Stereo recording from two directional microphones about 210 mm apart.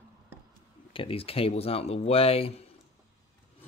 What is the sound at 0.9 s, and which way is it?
Speech, 25° left (ahead or behind).